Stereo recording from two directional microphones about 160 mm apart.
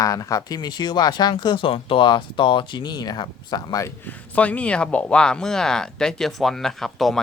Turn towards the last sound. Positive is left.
turn(degrees=0)  # may be behind; listen again after turning